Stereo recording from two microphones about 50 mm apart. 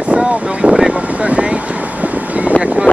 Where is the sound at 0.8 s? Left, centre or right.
Right.